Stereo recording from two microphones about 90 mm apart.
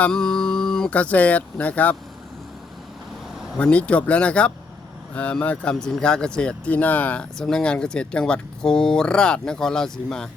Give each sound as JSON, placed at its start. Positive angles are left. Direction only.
{"t": 0.0, "sound": "speech", "side_deg": 5}
{"t": 3.6, "sound": "speech", "side_deg": 15}